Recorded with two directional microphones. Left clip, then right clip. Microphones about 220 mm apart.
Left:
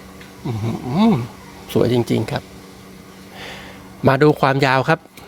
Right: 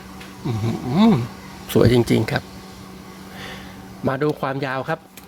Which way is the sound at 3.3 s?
10° left (ahead or behind).